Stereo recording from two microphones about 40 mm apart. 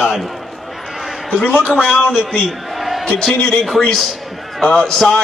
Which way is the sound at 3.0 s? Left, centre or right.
Centre.